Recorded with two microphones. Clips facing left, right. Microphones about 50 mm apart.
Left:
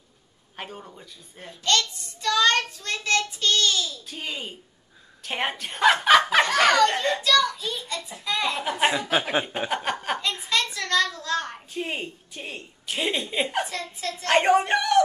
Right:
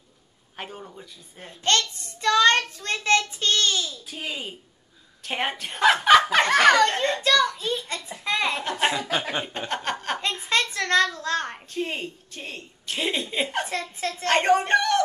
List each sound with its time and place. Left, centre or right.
0.6 s a woman's voice: centre
1.6 s child singing: right
4.1 s a woman's voice: centre
6.4 s a child's voice: right
8.5 s speech: centre
9.8 s chuckle: centre
10.5 s a sound: right
11.7 s a woman's voice: centre